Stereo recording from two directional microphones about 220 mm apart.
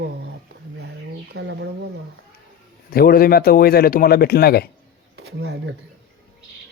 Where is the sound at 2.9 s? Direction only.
45° left (ahead or behind).